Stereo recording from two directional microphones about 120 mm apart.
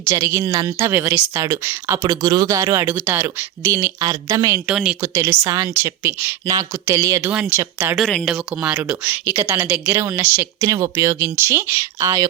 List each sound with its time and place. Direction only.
0.0 s speech: 25° right (ahead or behind)
4.7 s speech: 5° right (ahead or behind)
5.1 s speech: 25° right (ahead or behind)
8.0 s speech: 5° left (ahead or behind); by 9.9 s 10° right (ahead or behind)
10.3 s speech: 25° right (ahead or behind)